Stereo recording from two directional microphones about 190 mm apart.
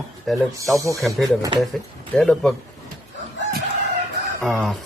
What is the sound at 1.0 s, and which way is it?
Speech, centre (ahead or behind).